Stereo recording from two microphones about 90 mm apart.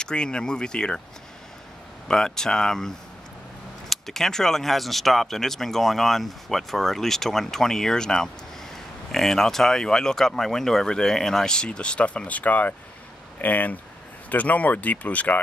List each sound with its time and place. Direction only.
0.0 s speech: 10° left (ahead or behind)
2.0 s speech: 5° left (ahead or behind)
3.9 s speech: 5° left (ahead or behind)